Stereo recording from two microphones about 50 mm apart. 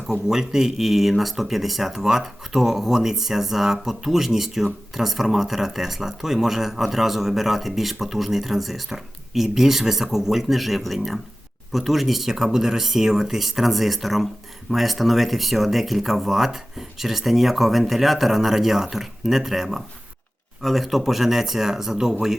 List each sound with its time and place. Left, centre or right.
0.1 s speech: centre